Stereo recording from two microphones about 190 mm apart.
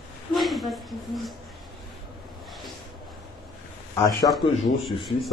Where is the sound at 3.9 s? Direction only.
20° left (ahead or behind).